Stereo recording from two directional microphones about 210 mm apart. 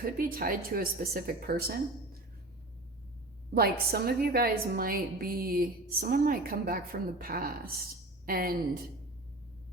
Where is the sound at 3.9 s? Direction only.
45° right (ahead or behind).